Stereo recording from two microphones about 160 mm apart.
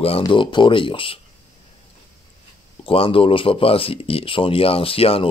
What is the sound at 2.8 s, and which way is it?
Speech, 35° left (ahead or behind).